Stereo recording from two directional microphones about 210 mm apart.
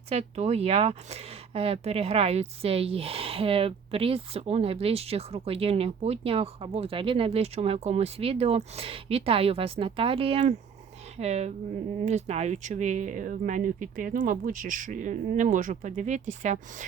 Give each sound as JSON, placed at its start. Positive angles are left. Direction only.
{"t": 0.1, "sound": "speech", "side_deg": -30}